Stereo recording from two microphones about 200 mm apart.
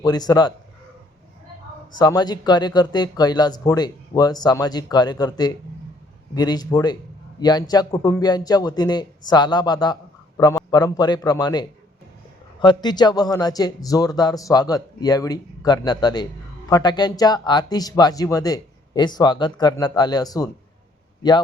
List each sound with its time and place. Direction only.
0.0 s a man's voice: 20° left (ahead or behind)
2.0 s a man's voice: 20° left (ahead or behind)
12.6 s a man's voice: 20° left (ahead or behind)